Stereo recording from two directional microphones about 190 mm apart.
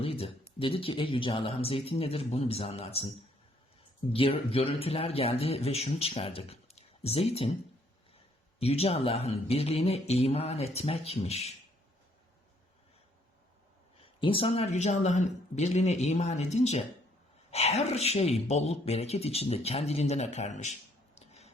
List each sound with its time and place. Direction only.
0.0 s a sound: 30° left (ahead or behind)
0.6 s speech: 30° left (ahead or behind)
4.1 s speech: 30° left (ahead or behind)
8.5 s speech: 30° left (ahead or behind)
14.0 s speech: 30° left (ahead or behind)
21.2 s a sound: 35° left (ahead or behind)